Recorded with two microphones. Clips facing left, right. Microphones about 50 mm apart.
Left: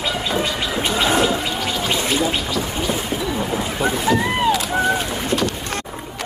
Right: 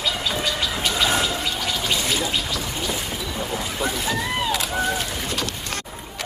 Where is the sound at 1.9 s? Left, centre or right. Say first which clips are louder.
Left 4 dB; left.